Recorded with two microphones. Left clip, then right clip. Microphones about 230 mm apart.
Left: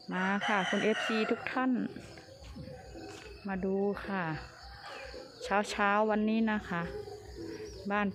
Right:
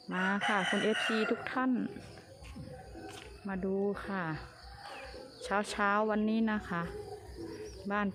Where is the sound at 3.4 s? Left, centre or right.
Centre.